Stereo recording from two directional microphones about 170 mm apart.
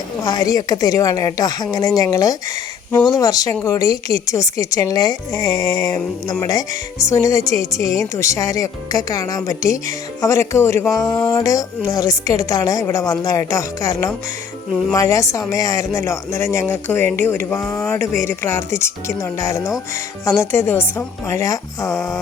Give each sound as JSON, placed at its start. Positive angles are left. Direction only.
{"t": 0.2, "sound": "speech", "side_deg": 20}